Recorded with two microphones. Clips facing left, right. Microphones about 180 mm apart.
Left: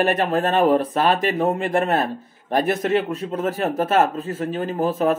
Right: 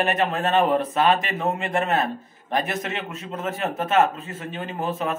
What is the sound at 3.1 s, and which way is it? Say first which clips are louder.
Speech: left 6 dB; 35° left (ahead or behind).